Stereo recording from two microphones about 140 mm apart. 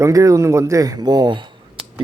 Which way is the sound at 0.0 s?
25° right (ahead or behind).